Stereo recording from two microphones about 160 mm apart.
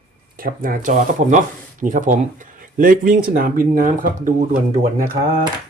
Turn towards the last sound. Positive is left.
turn(degrees=-65)  # may be behind; listen again after turning